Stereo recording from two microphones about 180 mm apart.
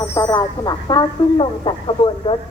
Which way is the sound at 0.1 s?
20° left (ahead or behind).